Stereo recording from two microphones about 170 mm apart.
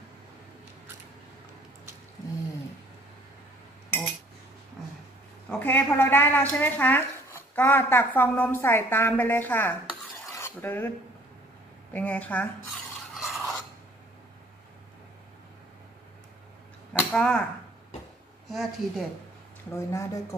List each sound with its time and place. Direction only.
5.5 s speech: 10° left (ahead or behind)
10.3 s filing: 15° left (ahead or behind)
11.9 s speech: 10° left (ahead or behind)
13.1 s filing: centre (ahead or behind)
16.9 s a sound: 5° left (ahead or behind)
18.5 s speech: centre (ahead or behind)
19.7 s speech: 20° left (ahead or behind)